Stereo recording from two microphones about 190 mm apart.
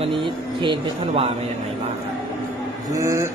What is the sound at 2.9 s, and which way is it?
Speech, 15° right (ahead or behind).